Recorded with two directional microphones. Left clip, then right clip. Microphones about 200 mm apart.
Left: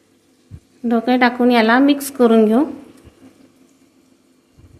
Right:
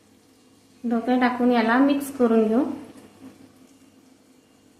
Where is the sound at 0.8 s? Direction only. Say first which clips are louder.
Left 7 dB; 45° left (ahead or behind).